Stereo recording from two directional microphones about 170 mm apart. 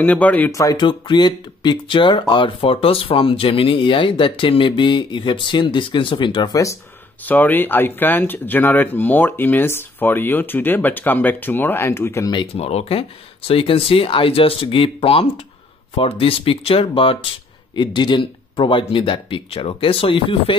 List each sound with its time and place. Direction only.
0.0 s speech: 10° left (ahead or behind)
12.4 s speech: 35° left (ahead or behind)